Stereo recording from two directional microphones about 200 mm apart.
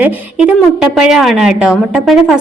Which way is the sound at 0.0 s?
5° right (ahead or behind).